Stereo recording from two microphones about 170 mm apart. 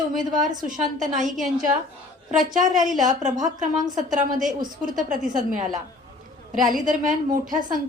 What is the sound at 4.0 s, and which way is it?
A woman's voice, 50° right (ahead or behind).